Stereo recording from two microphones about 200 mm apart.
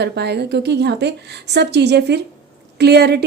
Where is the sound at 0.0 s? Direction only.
55° right (ahead or behind).